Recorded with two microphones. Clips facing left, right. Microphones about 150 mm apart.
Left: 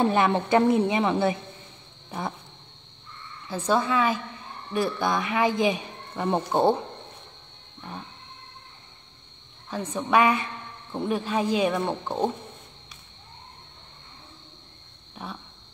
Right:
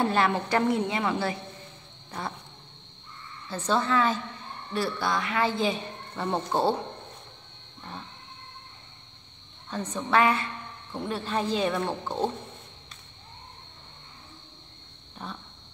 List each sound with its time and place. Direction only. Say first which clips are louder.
0.0 s a woman's voice: left 3 dB; 20° left (ahead or behind)
2.0 s insect: left 3 dB; 15° left (ahead or behind)
3.4 s a woman's voice: left 2 dB; 10° left (ahead or behind)
9.7 s a woman's voice: left 2 dB; 10° left (ahead or behind)
15.2 s a sound: left 1 dB; 10° left (ahead or behind)